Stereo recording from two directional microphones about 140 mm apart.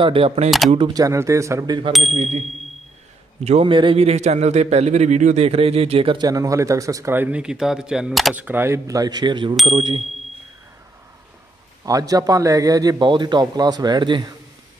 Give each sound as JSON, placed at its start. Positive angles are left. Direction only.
{"t": 0.0, "sound": "a man's voice", "side_deg": -40}
{"t": 0.9, "sound": "a man's voice", "side_deg": -20}
{"t": 1.9, "sound": "speech", "side_deg": 0}
{"t": 2.1, "sound": "ding", "side_deg": -50}
{"t": 3.4, "sound": "a man's voice", "side_deg": -45}
{"t": 8.4, "sound": "a man's voice", "side_deg": -15}
{"t": 11.8, "sound": "a man's voice", "side_deg": -25}